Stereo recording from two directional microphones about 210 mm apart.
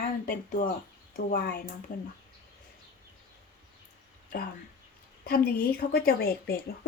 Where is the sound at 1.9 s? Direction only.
40° left (ahead or behind).